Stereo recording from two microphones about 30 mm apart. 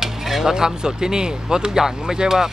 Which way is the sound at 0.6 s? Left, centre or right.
Right.